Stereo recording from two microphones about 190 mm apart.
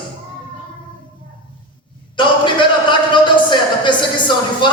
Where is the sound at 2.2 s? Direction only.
25° left (ahead or behind).